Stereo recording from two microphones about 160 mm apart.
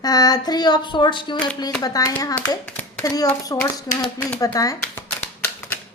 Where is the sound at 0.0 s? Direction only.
25° left (ahead or behind).